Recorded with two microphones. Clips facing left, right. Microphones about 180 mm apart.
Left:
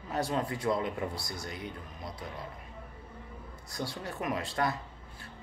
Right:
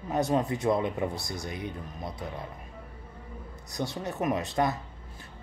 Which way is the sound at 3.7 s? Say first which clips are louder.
Right 5 dB; 20° right (ahead or behind).